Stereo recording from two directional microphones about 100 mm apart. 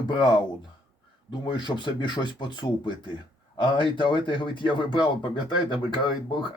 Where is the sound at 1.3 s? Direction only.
50° left (ahead or behind).